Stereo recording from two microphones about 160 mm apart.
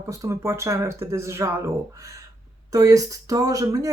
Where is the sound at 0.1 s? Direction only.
20° right (ahead or behind).